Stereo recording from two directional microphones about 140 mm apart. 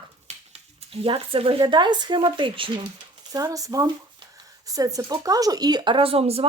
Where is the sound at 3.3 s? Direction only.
25° right (ahead or behind); by 6.4 s 45° right (ahead or behind).